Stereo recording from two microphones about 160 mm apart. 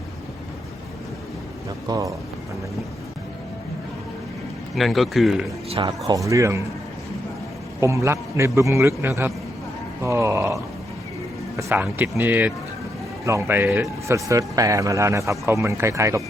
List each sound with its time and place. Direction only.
1.9 s a man's voice: 20° right (ahead or behind)
4.7 s speech: centre (ahead or behind)
5.6 s speech: 35° right (ahead or behind)
6.1 s a man's voice: 20° right (ahead or behind)
7.8 s a man's voice: 20° right (ahead or behind)
10.0 s groan: 15° right (ahead or behind)
11.5 s a man's voice: 15° right (ahead or behind)